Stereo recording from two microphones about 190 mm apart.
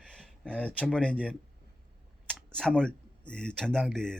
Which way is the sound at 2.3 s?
5° left (ahead or behind).